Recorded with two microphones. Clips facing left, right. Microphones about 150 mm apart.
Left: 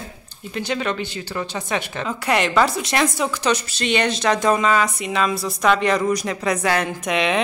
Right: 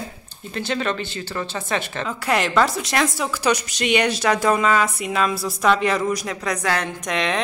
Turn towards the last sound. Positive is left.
turn(degrees=5)  # may be behind; listen again after turning